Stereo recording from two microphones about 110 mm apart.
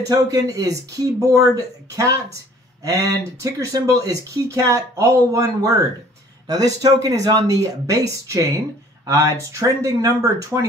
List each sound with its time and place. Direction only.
0.1 s speech: 30° right (ahead or behind)